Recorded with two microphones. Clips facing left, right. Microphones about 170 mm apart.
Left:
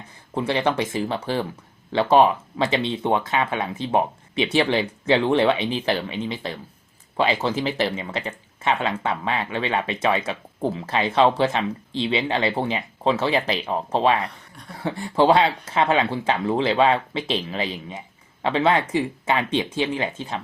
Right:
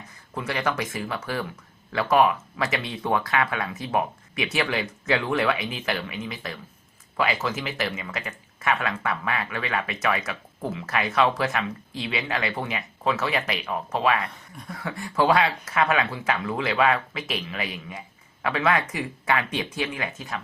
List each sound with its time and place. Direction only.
0.3 s speech: 30° left (ahead or behind)
14.3 s speech: centre (ahead or behind)
14.7 s speech: 30° left (ahead or behind)